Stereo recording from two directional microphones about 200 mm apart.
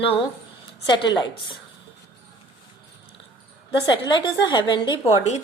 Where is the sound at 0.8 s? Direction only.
20° left (ahead or behind).